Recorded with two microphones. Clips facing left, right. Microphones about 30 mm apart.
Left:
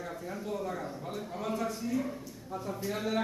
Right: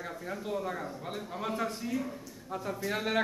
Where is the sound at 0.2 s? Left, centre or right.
Right.